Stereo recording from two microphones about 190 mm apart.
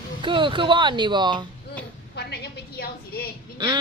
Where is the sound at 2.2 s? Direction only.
60° left (ahead or behind).